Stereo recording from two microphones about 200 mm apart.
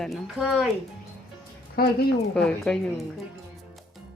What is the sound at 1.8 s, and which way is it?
Speech, 50° left (ahead or behind).